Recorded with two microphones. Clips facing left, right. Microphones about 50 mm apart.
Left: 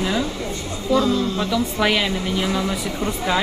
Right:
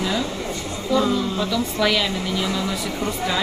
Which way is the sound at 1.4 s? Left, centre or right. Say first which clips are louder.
Left 1 dB; left.